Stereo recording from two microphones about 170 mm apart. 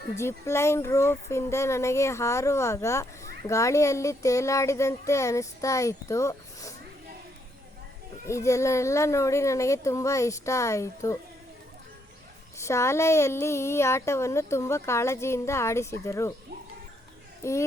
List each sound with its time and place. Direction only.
0.2 s speech: 15° left (ahead or behind)
8.3 s speech: 15° left (ahead or behind)
12.5 s speech: 15° left (ahead or behind)
17.4 s speech: 15° left (ahead or behind)